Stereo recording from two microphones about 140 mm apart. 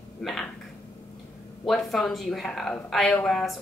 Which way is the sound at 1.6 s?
Centre (ahead or behind).